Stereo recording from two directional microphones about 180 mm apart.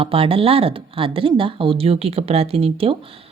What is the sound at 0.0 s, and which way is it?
A woman's voice, 30° right (ahead or behind).